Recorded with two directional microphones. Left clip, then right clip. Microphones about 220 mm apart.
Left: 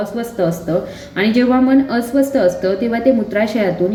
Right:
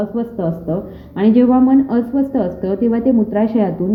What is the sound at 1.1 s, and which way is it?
A woman's voice, 15° right (ahead or behind).